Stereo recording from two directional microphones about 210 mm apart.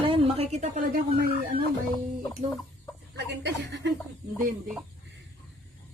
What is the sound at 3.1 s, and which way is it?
Speech, 55° right (ahead or behind).